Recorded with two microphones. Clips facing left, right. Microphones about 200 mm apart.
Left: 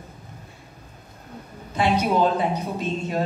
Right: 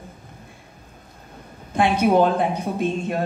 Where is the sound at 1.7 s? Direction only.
50° right (ahead or behind).